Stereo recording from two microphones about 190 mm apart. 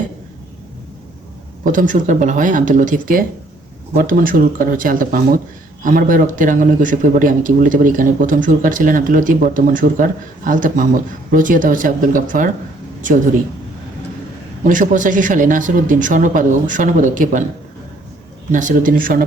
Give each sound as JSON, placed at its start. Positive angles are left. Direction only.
{"t": 1.6, "sound": "speech", "side_deg": -45}
{"t": 14.6, "sound": "speech", "side_deg": -45}
{"t": 18.5, "sound": "speech", "side_deg": -45}